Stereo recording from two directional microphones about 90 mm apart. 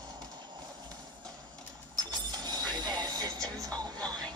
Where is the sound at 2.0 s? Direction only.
45° right (ahead or behind).